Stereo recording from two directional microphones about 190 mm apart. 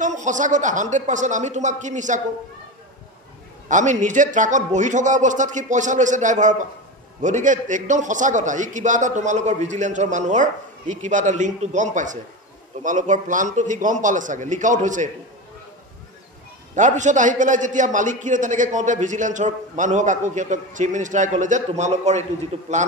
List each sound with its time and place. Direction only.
0.0 s a man's voice: 40° right (ahead or behind)
3.6 s a man's voice: 40° right (ahead or behind)
16.7 s a man's voice: 40° right (ahead or behind)